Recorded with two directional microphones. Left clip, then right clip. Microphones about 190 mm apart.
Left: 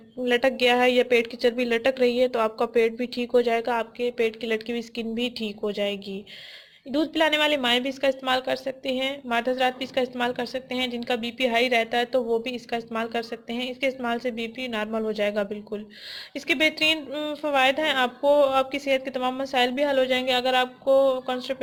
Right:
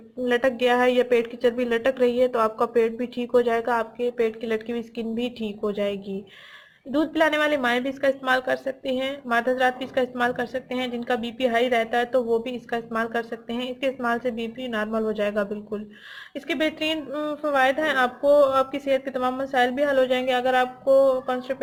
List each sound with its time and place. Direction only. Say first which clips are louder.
0.3 s a woman's voice: even; 25° left (ahead or behind)